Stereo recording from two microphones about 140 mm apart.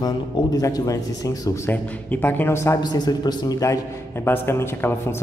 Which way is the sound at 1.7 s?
10° left (ahead or behind).